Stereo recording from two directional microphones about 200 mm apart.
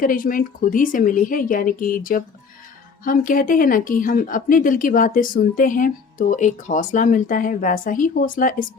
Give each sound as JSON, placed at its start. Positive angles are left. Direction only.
{"t": 0.0, "sound": "speech", "side_deg": 45}